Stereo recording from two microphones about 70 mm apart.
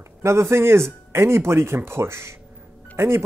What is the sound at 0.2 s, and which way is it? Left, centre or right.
Speech, right.